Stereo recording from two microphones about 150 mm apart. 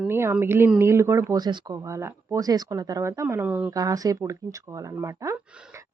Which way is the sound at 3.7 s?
25° right (ahead or behind).